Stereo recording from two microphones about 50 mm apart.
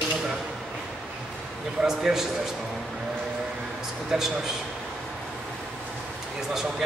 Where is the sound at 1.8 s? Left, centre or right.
Centre.